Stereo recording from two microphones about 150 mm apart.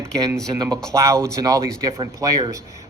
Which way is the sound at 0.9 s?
20° right (ahead or behind).